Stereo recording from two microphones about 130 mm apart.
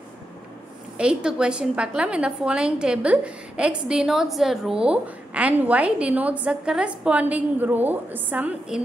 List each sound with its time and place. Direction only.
0.9 s a woman's voice: 5° right (ahead or behind)